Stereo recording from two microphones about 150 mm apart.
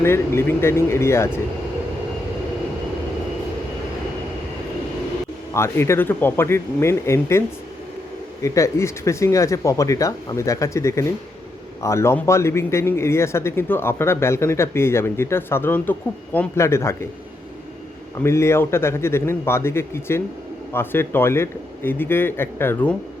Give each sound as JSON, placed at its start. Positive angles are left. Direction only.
{"t": 0.0, "sound": "a man's voice", "side_deg": 15}
{"t": 5.5, "sound": "a man's voice", "side_deg": 15}
{"t": 18.2, "sound": "a man's voice", "side_deg": 15}